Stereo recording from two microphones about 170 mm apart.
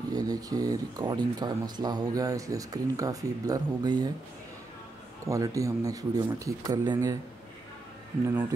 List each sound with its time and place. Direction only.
0.1 s speech: 20° right (ahead or behind)
5.2 s speech: 20° right (ahead or behind)